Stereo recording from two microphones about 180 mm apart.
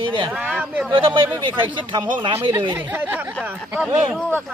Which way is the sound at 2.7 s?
10° right (ahead or behind).